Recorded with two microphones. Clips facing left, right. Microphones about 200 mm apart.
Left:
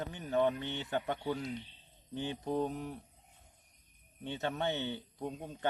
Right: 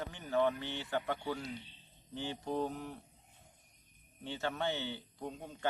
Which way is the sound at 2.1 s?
15° left (ahead or behind).